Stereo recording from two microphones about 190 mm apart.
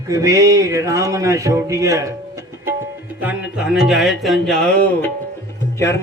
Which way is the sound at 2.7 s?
10° right (ahead or behind).